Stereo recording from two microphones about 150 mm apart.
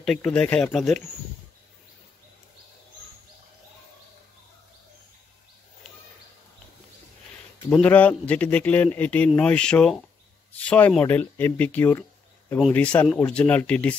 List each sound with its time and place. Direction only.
0.0 s speech: 5° left (ahead or behind)
7.7 s speech: 10° left (ahead or behind)